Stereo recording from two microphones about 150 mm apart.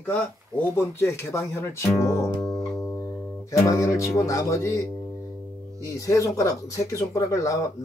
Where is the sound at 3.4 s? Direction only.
20° left (ahead or behind).